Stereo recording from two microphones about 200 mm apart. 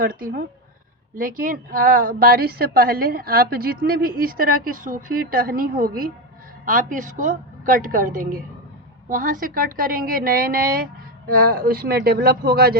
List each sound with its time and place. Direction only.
0.0 s a woman's voice: 45° right (ahead or behind)